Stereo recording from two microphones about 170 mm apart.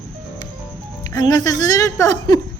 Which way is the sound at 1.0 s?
25° left (ahead or behind).